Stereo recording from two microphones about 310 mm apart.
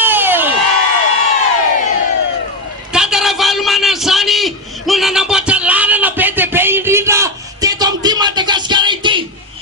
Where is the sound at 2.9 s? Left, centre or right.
Centre.